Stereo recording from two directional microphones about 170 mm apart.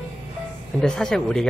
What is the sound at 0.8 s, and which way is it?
Speech, 5° left (ahead or behind).